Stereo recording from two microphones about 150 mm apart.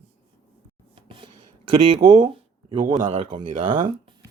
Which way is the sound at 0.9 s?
35° right (ahead or behind).